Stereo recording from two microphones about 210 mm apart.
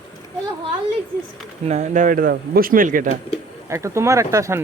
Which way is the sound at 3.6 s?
15° right (ahead or behind).